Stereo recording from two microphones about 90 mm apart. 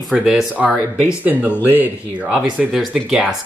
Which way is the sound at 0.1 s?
5° right (ahead or behind).